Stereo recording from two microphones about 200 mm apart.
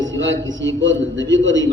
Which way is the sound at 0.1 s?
65° right (ahead or behind).